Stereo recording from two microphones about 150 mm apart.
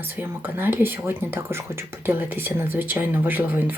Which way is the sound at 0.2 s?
15° right (ahead or behind).